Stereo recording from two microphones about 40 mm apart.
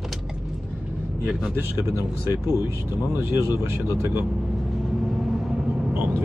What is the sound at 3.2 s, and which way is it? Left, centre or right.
Speech, right.